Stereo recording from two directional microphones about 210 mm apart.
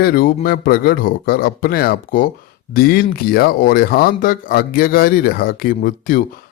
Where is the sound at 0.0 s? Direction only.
45° left (ahead or behind).